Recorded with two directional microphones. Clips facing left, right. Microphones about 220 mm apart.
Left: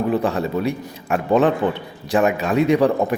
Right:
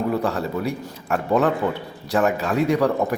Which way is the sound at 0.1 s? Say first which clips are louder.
Left 3 dB; 20° left (ahead or behind).